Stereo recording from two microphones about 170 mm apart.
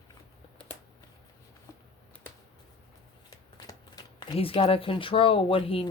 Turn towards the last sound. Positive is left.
turn(degrees=35)  # may be behind; listen again after turning